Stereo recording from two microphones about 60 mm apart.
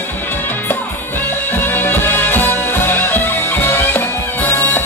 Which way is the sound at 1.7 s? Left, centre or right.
Left.